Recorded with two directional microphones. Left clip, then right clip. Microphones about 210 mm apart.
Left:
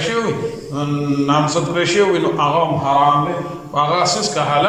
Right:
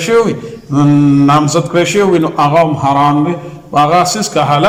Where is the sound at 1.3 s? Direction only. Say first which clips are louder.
Right 6 dB; 45° right (ahead or behind).